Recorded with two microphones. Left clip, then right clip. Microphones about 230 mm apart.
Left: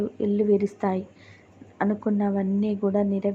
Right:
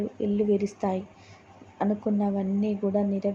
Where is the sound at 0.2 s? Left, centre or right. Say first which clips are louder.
Left 3 dB; centre.